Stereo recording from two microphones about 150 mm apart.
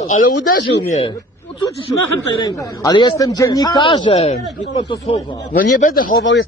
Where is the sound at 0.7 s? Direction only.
60° left (ahead or behind).